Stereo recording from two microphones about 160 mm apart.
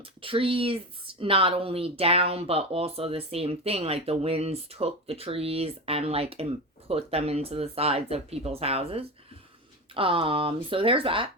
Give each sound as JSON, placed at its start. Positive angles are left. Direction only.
{"t": 0.0, "sound": "speech", "side_deg": -35}